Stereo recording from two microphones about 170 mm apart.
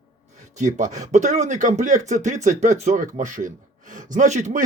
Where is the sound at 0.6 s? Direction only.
45° right (ahead or behind).